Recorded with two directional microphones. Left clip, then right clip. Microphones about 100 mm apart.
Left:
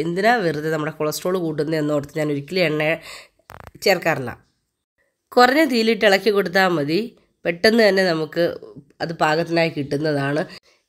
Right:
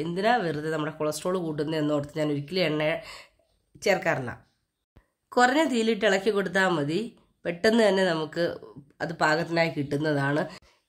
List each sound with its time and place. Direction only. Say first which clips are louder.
0.0 s a woman's voice: left 7 dB; 60° left (ahead or behind); by 10.6 s 35° left (ahead or behind)